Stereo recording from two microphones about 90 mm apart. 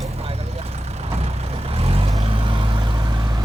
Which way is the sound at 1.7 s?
90° right.